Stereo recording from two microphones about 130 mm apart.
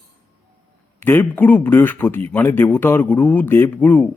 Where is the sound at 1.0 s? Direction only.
15° left (ahead or behind).